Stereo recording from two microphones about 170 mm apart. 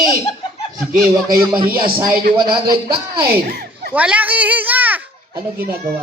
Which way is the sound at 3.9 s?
10° right (ahead or behind).